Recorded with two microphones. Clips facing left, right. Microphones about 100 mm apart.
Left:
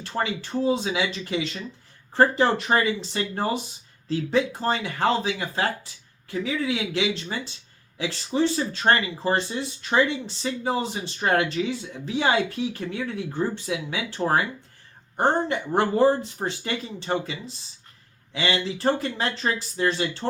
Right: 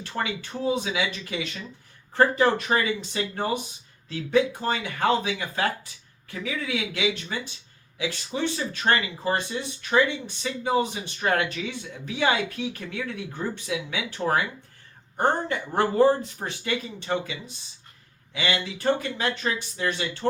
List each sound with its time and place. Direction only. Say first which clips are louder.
0.0 s speech: left 2 dB; 30° left (ahead or behind)
18.3 s speech: left 2 dB; 30° left (ahead or behind)